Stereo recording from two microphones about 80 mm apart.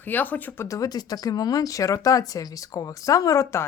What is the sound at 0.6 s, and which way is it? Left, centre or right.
Speech, left.